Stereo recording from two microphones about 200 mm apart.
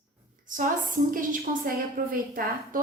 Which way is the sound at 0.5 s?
40° right (ahead or behind).